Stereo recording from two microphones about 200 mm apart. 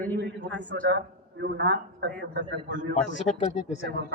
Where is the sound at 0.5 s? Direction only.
65° right (ahead or behind).